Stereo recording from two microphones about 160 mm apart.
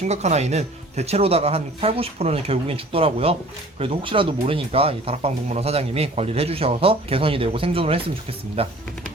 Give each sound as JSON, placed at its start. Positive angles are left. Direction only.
{"t": 0.0, "sound": "speech", "side_deg": -45}